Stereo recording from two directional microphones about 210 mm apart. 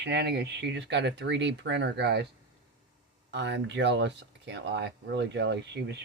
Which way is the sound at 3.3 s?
55° right (ahead or behind).